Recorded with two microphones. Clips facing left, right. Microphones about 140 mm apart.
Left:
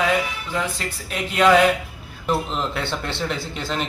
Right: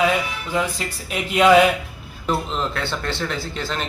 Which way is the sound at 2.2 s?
15° left (ahead or behind).